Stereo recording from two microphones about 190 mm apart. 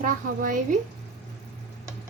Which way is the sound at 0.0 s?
45° right (ahead or behind).